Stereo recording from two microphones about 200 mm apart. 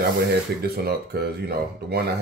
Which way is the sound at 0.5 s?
55° right (ahead or behind).